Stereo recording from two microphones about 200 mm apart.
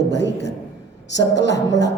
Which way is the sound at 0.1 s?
60° left (ahead or behind).